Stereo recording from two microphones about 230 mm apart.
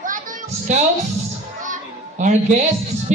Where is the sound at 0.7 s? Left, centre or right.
Right.